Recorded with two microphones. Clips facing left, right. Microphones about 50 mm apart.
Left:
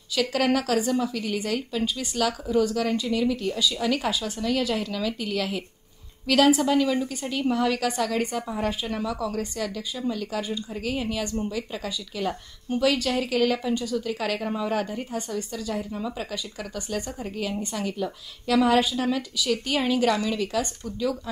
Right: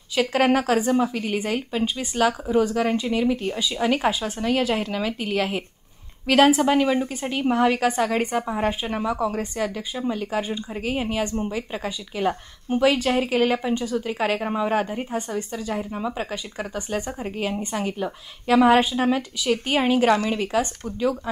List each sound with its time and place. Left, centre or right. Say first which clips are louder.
0.1 s a woman's voice: right 4 dB; right